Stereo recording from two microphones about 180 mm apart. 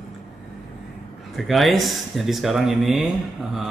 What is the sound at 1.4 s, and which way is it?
Speech, centre (ahead or behind).